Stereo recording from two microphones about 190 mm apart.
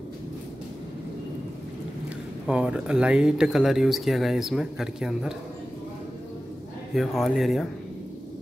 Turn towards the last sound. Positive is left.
turn(degrees=0)  # may be behind; listen again after turning